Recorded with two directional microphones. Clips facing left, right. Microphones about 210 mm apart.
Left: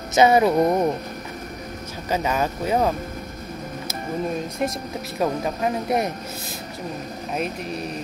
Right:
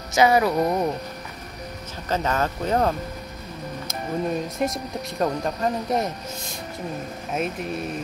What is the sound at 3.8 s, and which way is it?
Speech, centre (ahead or behind).